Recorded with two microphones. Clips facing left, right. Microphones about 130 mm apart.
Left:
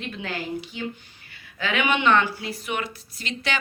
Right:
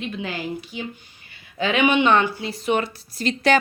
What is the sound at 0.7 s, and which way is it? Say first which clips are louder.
Speech: even; 15° right (ahead or behind).